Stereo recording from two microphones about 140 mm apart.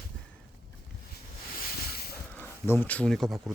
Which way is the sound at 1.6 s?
90° left.